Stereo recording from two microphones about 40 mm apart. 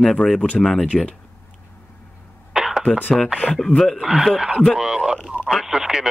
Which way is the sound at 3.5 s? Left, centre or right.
Centre.